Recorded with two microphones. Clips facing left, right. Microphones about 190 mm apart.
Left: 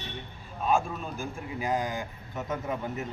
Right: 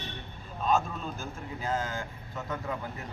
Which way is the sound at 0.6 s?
10° left (ahead or behind).